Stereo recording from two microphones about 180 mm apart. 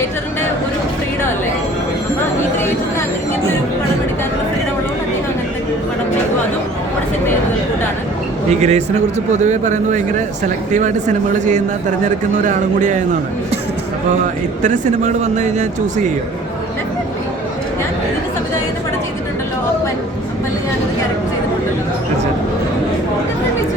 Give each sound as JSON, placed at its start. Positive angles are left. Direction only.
{"t": 8.4, "sound": "speech", "side_deg": -40}
{"t": 14.6, "sound": "speech", "side_deg": -40}